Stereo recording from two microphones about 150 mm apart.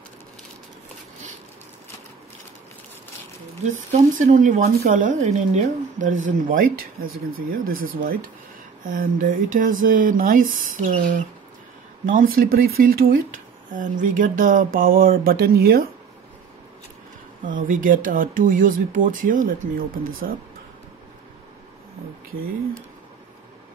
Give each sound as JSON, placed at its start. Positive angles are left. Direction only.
{"t": 3.6, "sound": "speech", "side_deg": -55}
{"t": 13.7, "sound": "speech", "side_deg": -60}
{"t": 17.5, "sound": "speech", "side_deg": -65}